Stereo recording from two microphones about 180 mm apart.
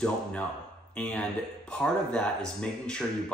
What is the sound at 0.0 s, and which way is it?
Speech, 5° left (ahead or behind).